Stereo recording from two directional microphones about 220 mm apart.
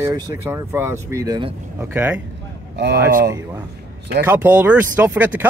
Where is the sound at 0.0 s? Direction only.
15° right (ahead or behind).